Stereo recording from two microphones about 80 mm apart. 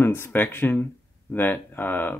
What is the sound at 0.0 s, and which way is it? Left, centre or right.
Speech, left.